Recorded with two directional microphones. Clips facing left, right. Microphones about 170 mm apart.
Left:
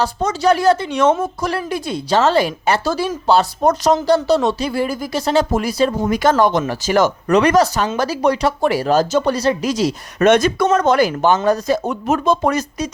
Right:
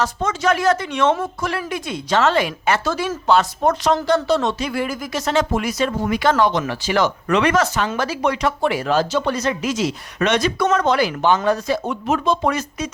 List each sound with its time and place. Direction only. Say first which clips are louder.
0.0 s speech: left 3 dB; 35° left (ahead or behind)